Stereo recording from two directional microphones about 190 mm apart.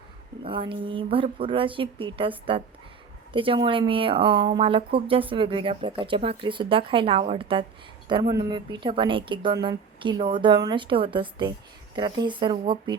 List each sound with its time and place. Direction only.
0.4 s speech: 25° right (ahead or behind)